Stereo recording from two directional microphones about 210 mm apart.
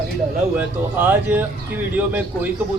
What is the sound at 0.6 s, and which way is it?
A man's voice, 10° right (ahead or behind).